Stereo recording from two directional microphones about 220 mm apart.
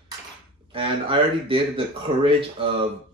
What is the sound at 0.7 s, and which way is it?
Speech, 25° right (ahead or behind).